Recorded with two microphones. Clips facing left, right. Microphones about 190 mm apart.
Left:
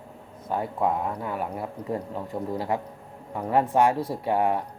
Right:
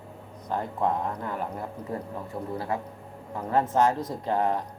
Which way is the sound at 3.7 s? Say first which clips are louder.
Left 2 dB; 10° left (ahead or behind).